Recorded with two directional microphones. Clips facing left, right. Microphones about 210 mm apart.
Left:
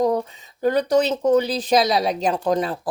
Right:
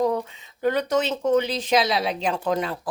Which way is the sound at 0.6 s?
35° left (ahead or behind).